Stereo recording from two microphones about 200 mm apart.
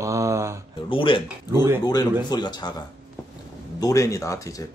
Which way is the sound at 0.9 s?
25° left (ahead or behind).